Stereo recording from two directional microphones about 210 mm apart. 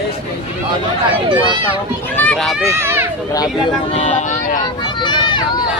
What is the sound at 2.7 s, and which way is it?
Speech, 10° right (ahead or behind).